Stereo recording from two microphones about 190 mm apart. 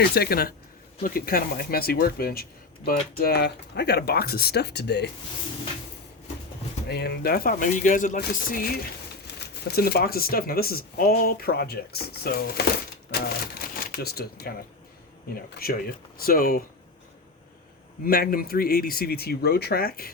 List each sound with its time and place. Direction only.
0.0 s speech: 55° left (ahead or behind)
6.8 s speech: 60° left (ahead or behind)
18.0 s speech: 50° left (ahead or behind)